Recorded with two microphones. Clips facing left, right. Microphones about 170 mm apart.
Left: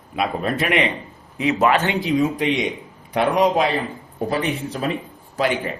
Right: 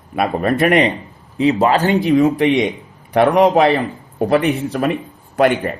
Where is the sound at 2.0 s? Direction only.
65° right (ahead or behind).